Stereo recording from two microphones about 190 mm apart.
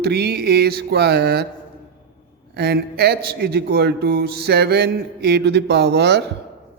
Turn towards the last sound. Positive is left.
turn(degrees=-65)  # may be behind; listen again after turning